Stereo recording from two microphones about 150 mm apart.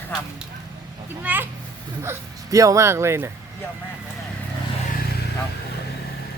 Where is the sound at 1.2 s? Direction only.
10° right (ahead or behind).